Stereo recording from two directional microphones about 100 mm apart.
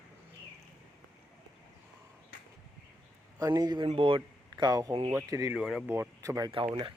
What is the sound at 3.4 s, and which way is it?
Speech, 40° right (ahead or behind).